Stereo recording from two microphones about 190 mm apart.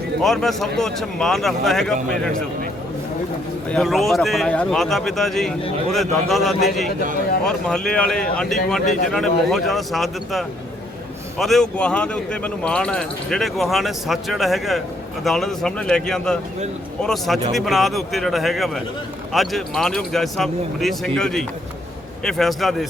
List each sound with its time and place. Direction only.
0.2 s speech: centre (ahead or behind)
3.7 s speech: centre (ahead or behind)
8.8 s a man's voice: 40° left (ahead or behind)
9.0 s speech: centre (ahead or behind)